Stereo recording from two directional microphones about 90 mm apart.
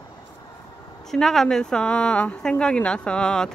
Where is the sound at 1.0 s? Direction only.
5° left (ahead or behind).